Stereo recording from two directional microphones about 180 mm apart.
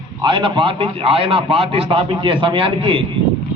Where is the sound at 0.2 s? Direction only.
30° right (ahead or behind).